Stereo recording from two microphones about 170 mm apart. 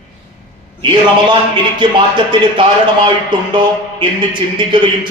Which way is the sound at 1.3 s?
30° right (ahead or behind).